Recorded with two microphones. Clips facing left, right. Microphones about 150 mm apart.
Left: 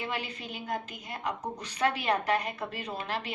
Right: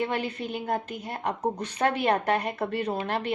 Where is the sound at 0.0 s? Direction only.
55° right (ahead or behind).